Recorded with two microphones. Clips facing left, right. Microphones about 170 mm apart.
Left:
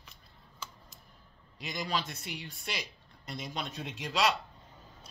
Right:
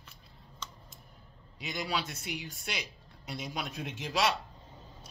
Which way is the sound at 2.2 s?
65° right (ahead or behind).